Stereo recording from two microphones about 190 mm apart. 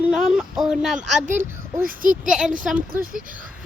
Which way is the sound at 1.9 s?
45° right (ahead or behind).